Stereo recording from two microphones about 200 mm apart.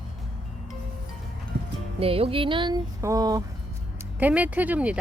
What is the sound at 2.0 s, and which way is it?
Music, 30° right (ahead or behind).